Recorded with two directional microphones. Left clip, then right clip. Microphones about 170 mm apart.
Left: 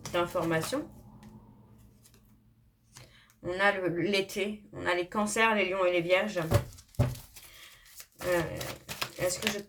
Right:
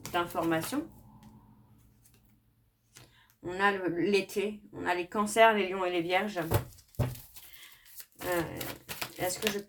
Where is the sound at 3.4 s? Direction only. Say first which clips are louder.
Left 1 dB; 30° right (ahead or behind).